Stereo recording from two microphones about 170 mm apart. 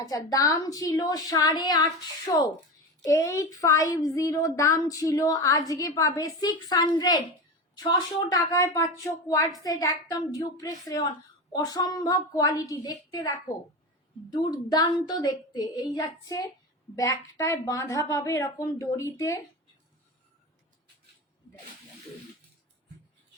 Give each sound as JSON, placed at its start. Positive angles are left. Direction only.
{"t": 0.3, "sound": "a woman's voice", "side_deg": 20}